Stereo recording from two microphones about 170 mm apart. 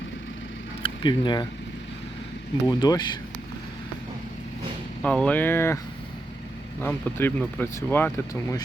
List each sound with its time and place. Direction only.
0.8 s speech: 30° left (ahead or behind)
2.6 s speech: 25° left (ahead or behind)
5.0 s speech: 5° left (ahead or behind)
6.8 s speech: 10° left (ahead or behind)